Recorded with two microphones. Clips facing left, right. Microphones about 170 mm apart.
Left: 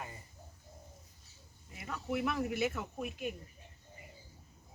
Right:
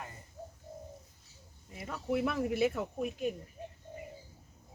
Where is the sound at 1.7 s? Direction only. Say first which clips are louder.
Right 4 dB; 30° right (ahead or behind).